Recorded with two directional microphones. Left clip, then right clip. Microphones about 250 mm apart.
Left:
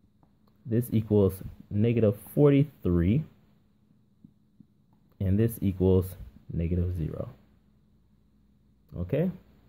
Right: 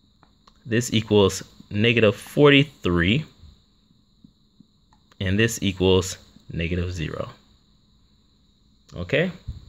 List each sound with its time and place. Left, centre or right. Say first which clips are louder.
0.7 s speech: right 6 dB; centre
5.1 s speech: right 7 dB; centre
8.8 s speech: right 7 dB; centre